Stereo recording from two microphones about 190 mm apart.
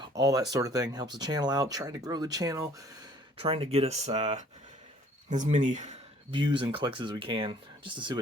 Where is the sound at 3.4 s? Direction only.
30° right (ahead or behind).